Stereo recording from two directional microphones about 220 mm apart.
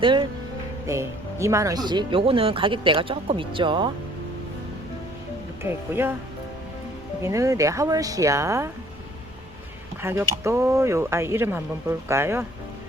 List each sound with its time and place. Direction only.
0.0 s speech: 20° right (ahead or behind)
5.6 s speech: 10° right (ahead or behind)
7.2 s speech: 15° right (ahead or behind)
10.0 s speech: 10° right (ahead or behind)